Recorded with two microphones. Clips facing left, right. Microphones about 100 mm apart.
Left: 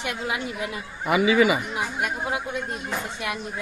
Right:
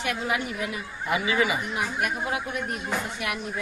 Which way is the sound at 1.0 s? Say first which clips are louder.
Left 6 dB; 90° left.